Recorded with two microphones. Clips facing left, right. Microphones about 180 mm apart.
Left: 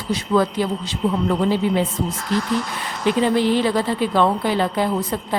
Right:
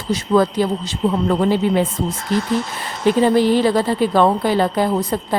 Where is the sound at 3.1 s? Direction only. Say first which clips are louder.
Right 3 dB; 40° right (ahead or behind).